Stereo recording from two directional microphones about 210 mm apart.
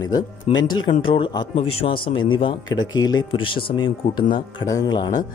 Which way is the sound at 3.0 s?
65° left (ahead or behind).